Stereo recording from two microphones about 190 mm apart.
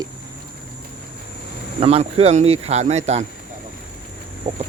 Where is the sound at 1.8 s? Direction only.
30° right (ahead or behind).